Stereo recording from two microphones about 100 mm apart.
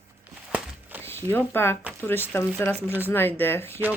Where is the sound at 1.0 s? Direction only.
20° left (ahead or behind).